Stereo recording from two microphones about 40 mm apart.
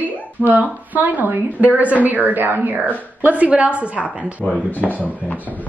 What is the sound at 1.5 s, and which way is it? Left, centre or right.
A woman's voice, right.